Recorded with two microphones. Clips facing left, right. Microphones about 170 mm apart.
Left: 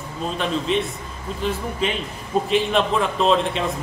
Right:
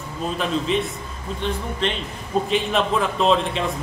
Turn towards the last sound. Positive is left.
turn(degrees=0)  # may be behind; listen again after turning